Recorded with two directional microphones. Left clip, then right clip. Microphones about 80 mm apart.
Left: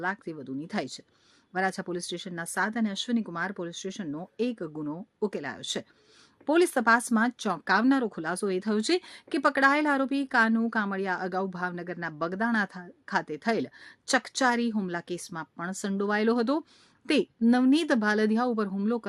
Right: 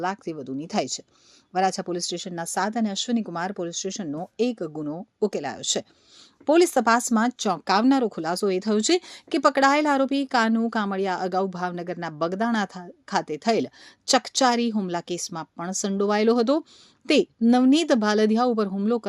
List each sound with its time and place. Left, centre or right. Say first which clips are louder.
0.0 s speech: right 4 dB; right
17.0 s a woman's voice: right 6 dB; right
17.4 s speech: right 4 dB; right